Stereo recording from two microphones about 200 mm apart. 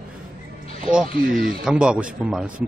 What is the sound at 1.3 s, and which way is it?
Speech, centre (ahead or behind).